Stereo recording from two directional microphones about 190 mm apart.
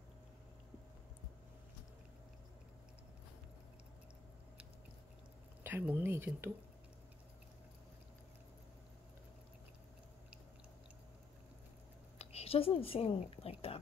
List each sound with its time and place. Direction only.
5.6 s speech: 10° right (ahead or behind)
12.2 s a woman's voice: 35° left (ahead or behind)